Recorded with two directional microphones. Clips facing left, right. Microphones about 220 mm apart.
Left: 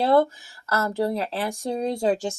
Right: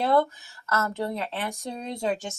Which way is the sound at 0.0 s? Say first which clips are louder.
Left 3 dB; 30° left (ahead or behind).